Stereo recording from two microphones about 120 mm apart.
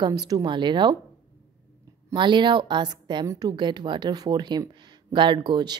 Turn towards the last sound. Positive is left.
turn(degrees=-40)  # may be behind; listen again after turning